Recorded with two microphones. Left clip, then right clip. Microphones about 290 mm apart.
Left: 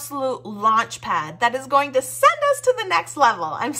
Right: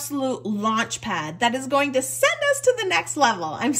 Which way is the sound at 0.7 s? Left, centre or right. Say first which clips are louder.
Left 4 dB; centre.